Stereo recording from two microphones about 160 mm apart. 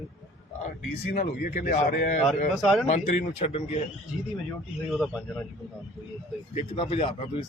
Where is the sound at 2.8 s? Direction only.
45° left (ahead or behind).